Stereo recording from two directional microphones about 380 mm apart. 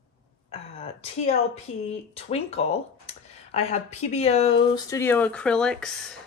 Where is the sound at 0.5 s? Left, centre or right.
Centre.